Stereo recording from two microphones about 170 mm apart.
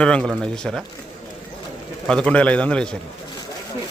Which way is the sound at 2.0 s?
5° left (ahead or behind).